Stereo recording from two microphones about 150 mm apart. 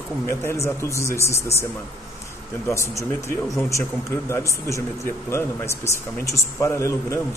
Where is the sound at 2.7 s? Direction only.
20° left (ahead or behind).